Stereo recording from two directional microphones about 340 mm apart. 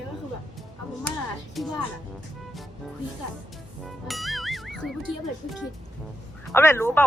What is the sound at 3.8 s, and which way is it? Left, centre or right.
Speech, centre.